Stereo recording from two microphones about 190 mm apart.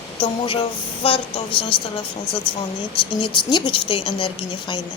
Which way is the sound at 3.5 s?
25° left (ahead or behind).